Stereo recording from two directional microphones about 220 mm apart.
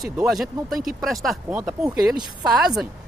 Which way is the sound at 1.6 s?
15° right (ahead or behind).